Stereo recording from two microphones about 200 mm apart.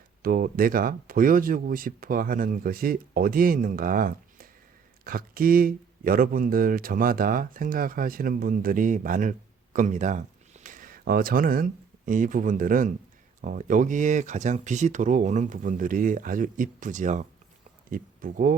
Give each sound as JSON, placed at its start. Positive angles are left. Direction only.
{"t": 0.2, "sound": "speech", "side_deg": -45}